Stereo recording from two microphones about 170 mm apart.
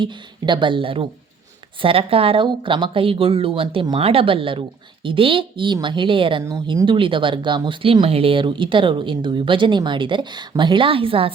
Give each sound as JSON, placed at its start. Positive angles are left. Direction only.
{"t": 0.0, "sound": "speech", "side_deg": -25}
{"t": 6.4, "sound": "speech", "side_deg": -20}